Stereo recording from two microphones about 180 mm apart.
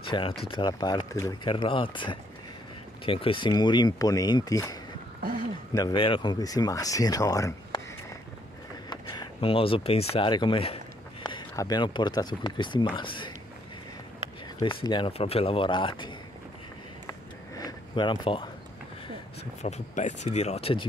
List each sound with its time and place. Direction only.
0.0 s speech: 30° left (ahead or behind)
8.9 s speech: 25° left (ahead or behind)
14.6 s speech: 25° left (ahead or behind)
17.6 s speech: 25° left (ahead or behind)
19.6 s speech: 40° left (ahead or behind)